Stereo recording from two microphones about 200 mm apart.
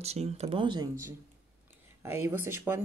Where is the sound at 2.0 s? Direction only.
10° right (ahead or behind).